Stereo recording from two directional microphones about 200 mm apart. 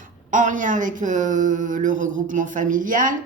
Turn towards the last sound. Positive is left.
turn(degrees=-40)  # may be behind; listen again after turning